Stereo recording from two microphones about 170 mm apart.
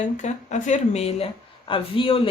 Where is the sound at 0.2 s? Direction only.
45° left (ahead or behind).